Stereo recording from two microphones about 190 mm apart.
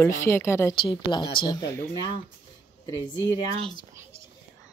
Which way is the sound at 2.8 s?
20° left (ahead or behind).